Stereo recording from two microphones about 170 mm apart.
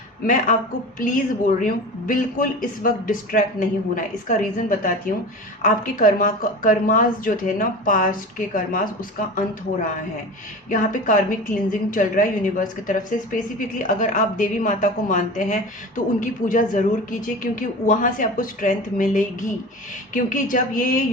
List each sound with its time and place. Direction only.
0.9 s speech: 50° left (ahead or behind)
10.7 s speech: 50° left (ahead or behind)